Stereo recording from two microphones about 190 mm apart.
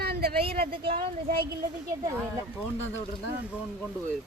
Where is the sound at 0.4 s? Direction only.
30° right (ahead or behind).